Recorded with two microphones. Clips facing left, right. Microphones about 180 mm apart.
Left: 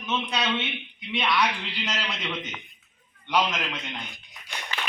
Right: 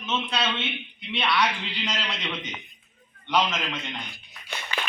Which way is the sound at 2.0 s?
10° right (ahead or behind).